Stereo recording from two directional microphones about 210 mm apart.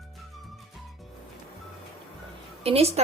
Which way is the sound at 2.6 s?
30° right (ahead or behind).